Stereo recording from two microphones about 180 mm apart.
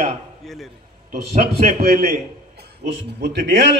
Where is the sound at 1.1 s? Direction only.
60° right (ahead or behind).